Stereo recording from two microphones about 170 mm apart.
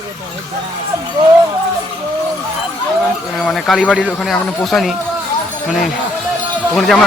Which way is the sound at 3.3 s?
Centre (ahead or behind).